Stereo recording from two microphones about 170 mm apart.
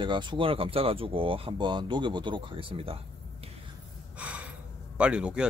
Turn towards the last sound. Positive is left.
turn(degrees=-5)  # may be behind; listen again after turning